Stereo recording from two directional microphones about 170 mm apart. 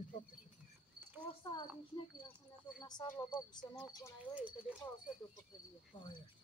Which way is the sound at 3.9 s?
20° left (ahead or behind).